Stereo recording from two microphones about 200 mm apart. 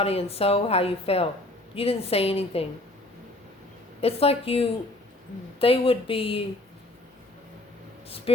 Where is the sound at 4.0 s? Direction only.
30° left (ahead or behind).